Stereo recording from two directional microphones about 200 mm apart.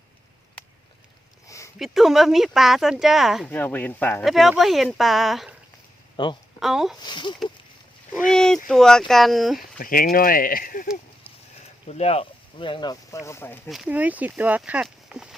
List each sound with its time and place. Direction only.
1.5 s a sound: 15° left (ahead or behind)
1.8 s speech: centre (ahead or behind)
6.2 s speech: 20° left (ahead or behind)
6.6 s speech: centre (ahead or behind)
7.0 s speech: 20° left (ahead or behind)
8.3 s speech: 5° left (ahead or behind)
9.7 s speech: 45° left (ahead or behind)
11.9 s speech: 30° left (ahead or behind); by 13.6 s 10° left (ahead or behind)
13.7 s speech: 5° right (ahead or behind)